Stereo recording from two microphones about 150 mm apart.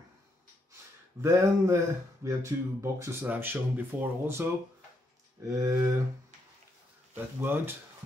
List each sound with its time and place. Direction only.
1.2 s speech: 20° right (ahead or behind)
5.5 s speech: 20° right (ahead or behind)
7.3 s speech: 15° right (ahead or behind)